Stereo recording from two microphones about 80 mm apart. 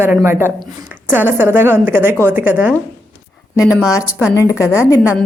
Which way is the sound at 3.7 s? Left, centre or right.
Centre.